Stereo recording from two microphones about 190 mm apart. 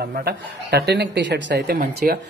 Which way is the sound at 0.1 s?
55° right (ahead or behind).